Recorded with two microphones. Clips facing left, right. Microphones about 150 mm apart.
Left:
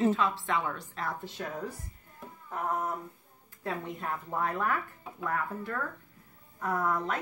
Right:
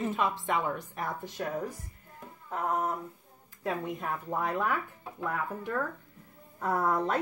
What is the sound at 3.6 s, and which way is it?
Speech, 15° right (ahead or behind).